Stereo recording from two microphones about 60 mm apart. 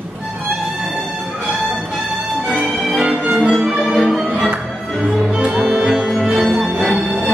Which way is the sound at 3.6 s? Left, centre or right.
Centre.